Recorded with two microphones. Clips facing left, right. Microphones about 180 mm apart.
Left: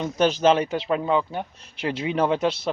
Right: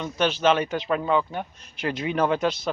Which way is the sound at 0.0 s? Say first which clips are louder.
Left 3 dB; 40° left (ahead or behind).